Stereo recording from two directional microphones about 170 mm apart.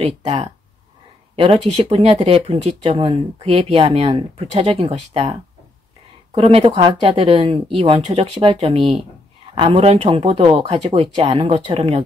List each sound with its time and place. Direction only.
0.0 s speech: 40° right (ahead or behind)